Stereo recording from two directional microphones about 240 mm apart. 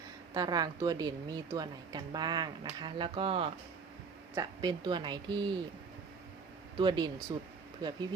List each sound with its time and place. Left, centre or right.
0.3 s a woman's voice: centre
6.7 s a woman's voice: centre